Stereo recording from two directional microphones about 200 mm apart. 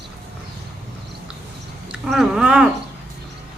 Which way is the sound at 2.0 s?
Centre (ahead or behind).